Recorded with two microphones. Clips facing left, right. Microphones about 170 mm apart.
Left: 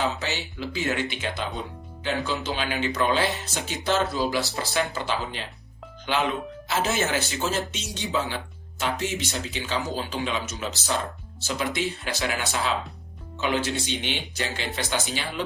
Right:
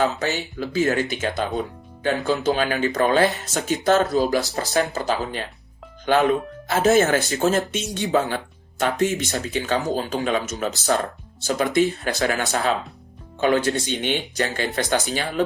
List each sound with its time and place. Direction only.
0.0 s speech: 45° right (ahead or behind)